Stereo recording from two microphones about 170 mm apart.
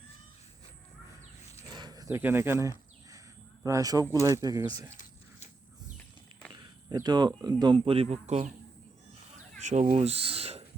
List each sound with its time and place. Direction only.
1.7 s a sound: 25° right (ahead or behind)
2.2 s speech: 15° right (ahead or behind)
6.5 s speech: 25° right (ahead or behind)
9.6 s speech: 45° right (ahead or behind)